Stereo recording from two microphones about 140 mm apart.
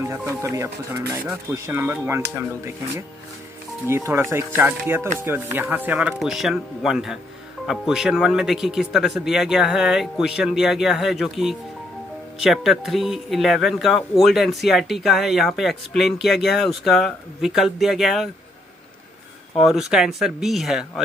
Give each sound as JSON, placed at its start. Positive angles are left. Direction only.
{"t": 0.0, "sound": "speech", "side_deg": -20}
{"t": 3.8, "sound": "speech", "side_deg": -20}
{"t": 19.5, "sound": "speech", "side_deg": 0}